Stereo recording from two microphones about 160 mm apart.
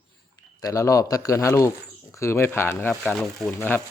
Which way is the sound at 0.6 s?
20° left (ahead or behind).